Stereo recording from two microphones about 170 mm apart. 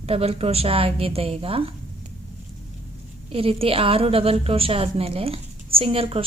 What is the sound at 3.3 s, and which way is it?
A woman's voice, 35° right (ahead or behind).